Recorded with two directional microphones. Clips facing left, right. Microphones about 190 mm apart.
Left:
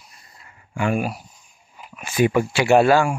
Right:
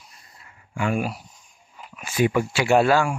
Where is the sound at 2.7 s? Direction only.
45° left (ahead or behind).